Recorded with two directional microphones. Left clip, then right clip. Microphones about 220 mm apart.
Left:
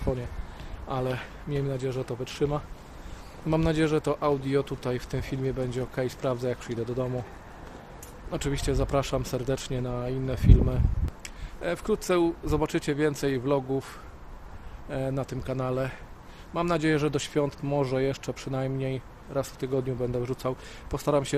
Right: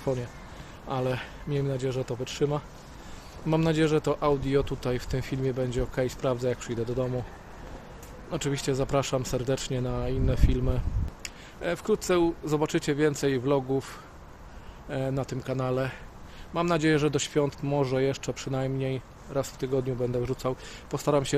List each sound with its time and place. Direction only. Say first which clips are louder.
0.9 s speech: right 1 dB; 5° right (ahead or behind)
8.3 s speech: right 1 dB; 5° right (ahead or behind)